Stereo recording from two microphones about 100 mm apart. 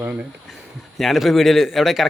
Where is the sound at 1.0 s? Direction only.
Centre (ahead or behind).